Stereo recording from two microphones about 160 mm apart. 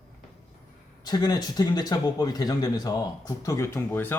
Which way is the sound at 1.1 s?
25° left (ahead or behind).